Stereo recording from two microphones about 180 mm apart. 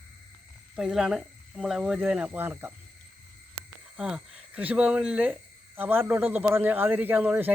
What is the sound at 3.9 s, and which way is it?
A man's voice, 5° right (ahead or behind).